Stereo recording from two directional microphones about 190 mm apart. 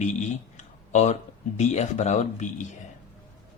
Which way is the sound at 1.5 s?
35° left (ahead or behind).